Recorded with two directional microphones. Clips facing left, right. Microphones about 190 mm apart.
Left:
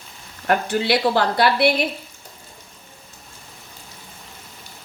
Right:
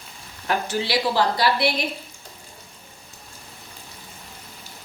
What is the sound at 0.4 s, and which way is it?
A woman's voice, 55° left (ahead or behind).